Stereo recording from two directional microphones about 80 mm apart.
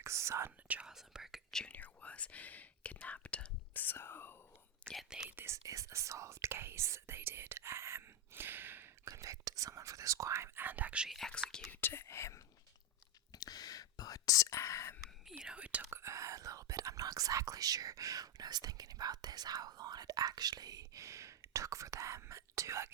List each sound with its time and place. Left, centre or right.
0.0 s speech: right
0.7 s speech: centre
1.5 s speech: centre
1.7 s speech: centre
5.0 s speech: centre
5.4 s speech: right; by 11.1 s centre
11.1 s speech: centre
11.7 s speech: left
13.3 s whispering: left
15.2 s speech: centre
15.8 s speech: right